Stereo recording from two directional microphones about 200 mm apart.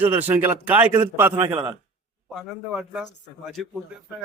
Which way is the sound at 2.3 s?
Centre (ahead or behind).